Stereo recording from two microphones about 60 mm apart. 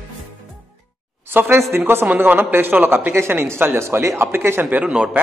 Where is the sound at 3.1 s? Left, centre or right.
Right.